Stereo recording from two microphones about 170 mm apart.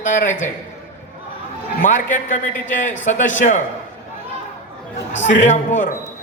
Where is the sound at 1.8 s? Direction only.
50° left (ahead or behind).